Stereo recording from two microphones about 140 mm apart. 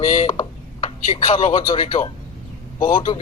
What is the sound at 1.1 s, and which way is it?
Speech, 40° left (ahead or behind).